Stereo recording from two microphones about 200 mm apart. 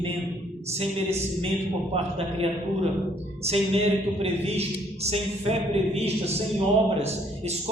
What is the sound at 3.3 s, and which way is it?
A man's voice, 30° right (ahead or behind).